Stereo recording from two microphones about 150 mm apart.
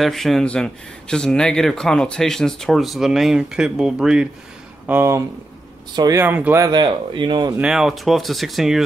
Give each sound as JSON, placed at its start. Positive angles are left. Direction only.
{"t": 0.0, "sound": "speech", "side_deg": 0}
{"t": 4.8, "sound": "speech", "side_deg": -15}
{"t": 6.2, "sound": "speech", "side_deg": -10}
{"t": 6.7, "sound": "speech", "side_deg": -30}
{"t": 7.5, "sound": "speech", "side_deg": -5}